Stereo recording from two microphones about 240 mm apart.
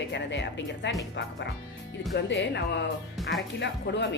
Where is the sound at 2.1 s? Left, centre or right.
Left.